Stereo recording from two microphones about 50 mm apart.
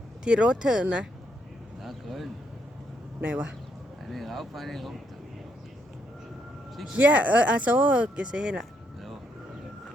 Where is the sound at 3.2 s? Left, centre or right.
Right.